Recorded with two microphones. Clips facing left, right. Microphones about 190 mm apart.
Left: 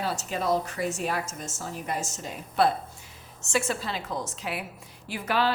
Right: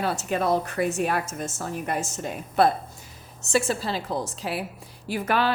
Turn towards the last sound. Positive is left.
turn(degrees=-50)  # may be behind; listen again after turning